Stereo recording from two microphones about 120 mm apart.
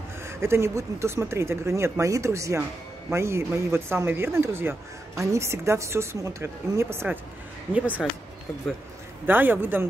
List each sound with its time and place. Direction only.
0.2 s a man's voice: 20° right (ahead or behind)
9.2 s a man's voice: 15° right (ahead or behind)